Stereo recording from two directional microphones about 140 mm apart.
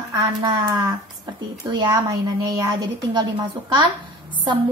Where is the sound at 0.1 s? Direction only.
30° right (ahead or behind).